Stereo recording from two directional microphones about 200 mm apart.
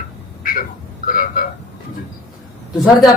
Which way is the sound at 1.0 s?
45° left (ahead or behind).